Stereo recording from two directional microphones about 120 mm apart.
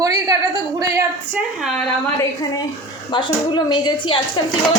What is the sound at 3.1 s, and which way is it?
A woman's voice, 40° left (ahead or behind).